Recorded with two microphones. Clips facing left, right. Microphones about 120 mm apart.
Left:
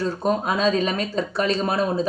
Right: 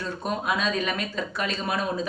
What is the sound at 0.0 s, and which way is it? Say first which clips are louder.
Speech: left 7 dB; 35° left (ahead or behind).